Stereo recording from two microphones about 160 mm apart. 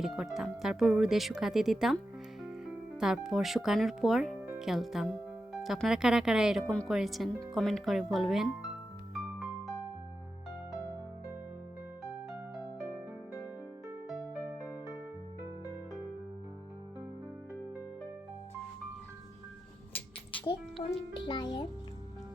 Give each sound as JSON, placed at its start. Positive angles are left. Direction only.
{"t": 0.0, "sound": "speech", "side_deg": 0}
{"t": 3.0, "sound": "speech", "side_deg": -5}
{"t": 9.1, "sound": "music", "side_deg": 0}
{"t": 20.8, "sound": "music", "side_deg": 25}